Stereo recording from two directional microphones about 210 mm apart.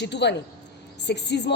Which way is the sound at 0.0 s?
55° left (ahead or behind).